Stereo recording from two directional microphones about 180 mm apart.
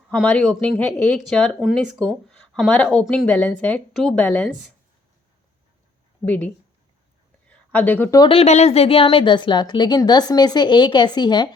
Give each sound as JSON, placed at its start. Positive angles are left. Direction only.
{"t": 0.1, "sound": "speech", "side_deg": 5}
{"t": 6.2, "sound": "speech", "side_deg": 10}
{"t": 7.4, "sound": "a sound", "side_deg": 10}
{"t": 8.2, "sound": "a woman's voice", "side_deg": 30}